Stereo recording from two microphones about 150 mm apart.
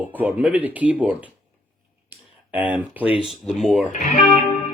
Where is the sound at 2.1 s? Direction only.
10° right (ahead or behind).